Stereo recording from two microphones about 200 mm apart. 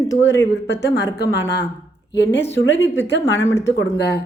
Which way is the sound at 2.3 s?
10° left (ahead or behind).